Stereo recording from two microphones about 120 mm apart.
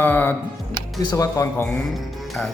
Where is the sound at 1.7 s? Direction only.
Centre (ahead or behind).